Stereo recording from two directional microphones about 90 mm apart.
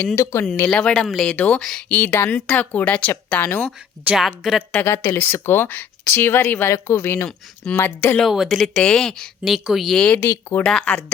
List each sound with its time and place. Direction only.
0.2 s speech: 35° left (ahead or behind)
0.9 s speech: 5° left (ahead or behind)
1.3 s speech: 15° left (ahead or behind)
4.1 s speech: centre (ahead or behind)
4.7 s speech: 25° left (ahead or behind)
7.3 s speech: 10° left (ahead or behind)
7.8 s speech: 20° left (ahead or behind)
8.2 s speech: centre (ahead or behind)
10.2 s speech: 25° left (ahead or behind)
10.7 s speech: 10° left (ahead or behind)